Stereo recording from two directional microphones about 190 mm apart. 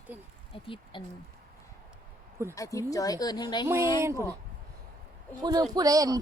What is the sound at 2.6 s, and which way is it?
A woman's voice, 15° left (ahead or behind).